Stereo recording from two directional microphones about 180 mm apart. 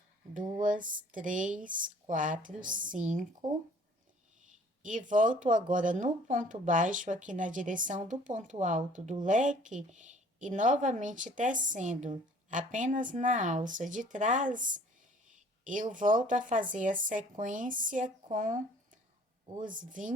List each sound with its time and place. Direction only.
0.5 s speech: 45° right (ahead or behind)
4.8 s speech: 45° right (ahead or behind)